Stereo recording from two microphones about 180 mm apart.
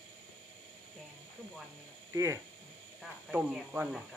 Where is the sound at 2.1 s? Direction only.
15° right (ahead or behind).